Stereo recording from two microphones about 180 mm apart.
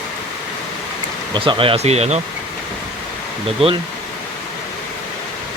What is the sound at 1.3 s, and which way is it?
Speech, 25° right (ahead or behind).